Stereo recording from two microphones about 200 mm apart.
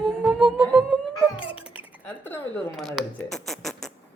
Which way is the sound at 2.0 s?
10° left (ahead or behind).